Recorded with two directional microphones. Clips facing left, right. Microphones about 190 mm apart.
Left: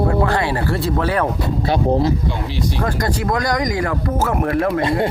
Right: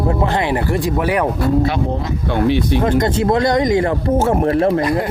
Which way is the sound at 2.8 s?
20° right (ahead or behind).